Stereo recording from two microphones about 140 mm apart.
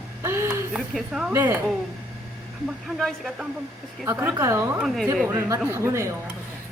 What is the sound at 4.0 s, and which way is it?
Speech, 15° right (ahead or behind).